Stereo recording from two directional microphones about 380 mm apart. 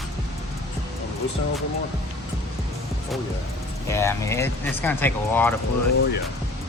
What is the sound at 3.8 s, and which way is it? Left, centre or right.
Speech, centre.